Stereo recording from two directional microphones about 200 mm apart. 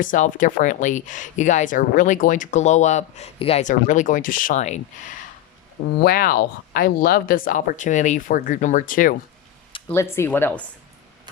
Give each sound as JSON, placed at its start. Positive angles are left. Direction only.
{"t": 0.0, "sound": "speech", "side_deg": 40}
{"t": 6.0, "sound": "speech", "side_deg": 45}
{"t": 9.9, "sound": "speech", "side_deg": 15}